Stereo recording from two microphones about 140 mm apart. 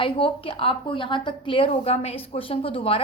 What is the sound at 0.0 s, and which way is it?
A woman's voice, 40° left (ahead or behind).